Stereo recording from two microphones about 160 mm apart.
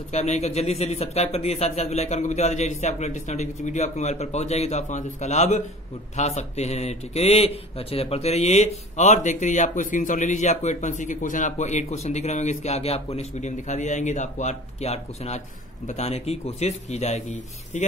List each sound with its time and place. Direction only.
0.1 s a man's voice: 45° left (ahead or behind)